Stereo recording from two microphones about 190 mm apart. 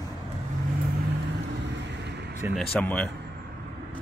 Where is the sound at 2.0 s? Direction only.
60° right (ahead or behind).